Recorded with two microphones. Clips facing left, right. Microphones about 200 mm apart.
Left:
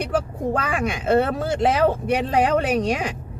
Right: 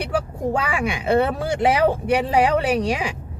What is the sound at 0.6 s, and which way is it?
Speech, 10° right (ahead or behind).